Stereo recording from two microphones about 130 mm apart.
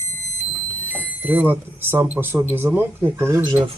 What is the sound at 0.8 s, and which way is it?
Smoke detector, 15° right (ahead or behind).